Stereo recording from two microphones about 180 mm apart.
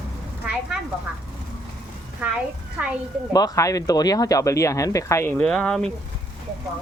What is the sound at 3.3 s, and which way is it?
Speech, 20° left (ahead or behind).